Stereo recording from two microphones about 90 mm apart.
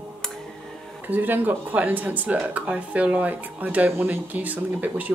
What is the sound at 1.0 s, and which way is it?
Speech, 20° right (ahead or behind).